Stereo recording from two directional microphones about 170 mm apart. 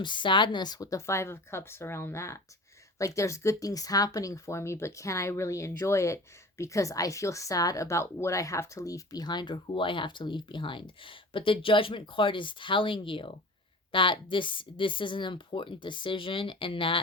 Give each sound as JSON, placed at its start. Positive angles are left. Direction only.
{"t": 0.0, "sound": "a woman's voice", "side_deg": 30}